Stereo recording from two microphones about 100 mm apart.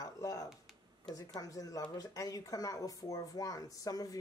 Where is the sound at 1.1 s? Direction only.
35° left (ahead or behind).